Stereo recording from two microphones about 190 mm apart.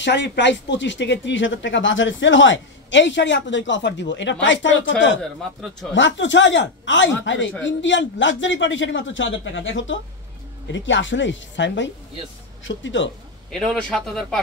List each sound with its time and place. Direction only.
0.0 s speech: 65° left (ahead or behind)
5.2 s speech: centre (ahead or behind)
5.9 s speech: 75° left (ahead or behind)
13.5 s speech: 5° left (ahead or behind)